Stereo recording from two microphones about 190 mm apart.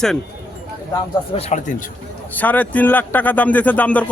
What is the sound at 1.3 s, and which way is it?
Speech, 40° left (ahead or behind).